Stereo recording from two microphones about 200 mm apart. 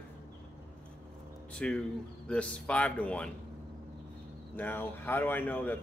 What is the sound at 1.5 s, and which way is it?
Speech, 5° left (ahead or behind).